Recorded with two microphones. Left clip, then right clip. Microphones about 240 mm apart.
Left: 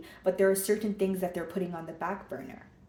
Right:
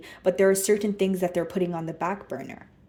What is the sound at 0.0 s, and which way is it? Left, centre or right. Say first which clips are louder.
A woman's voice: right 5 dB; right.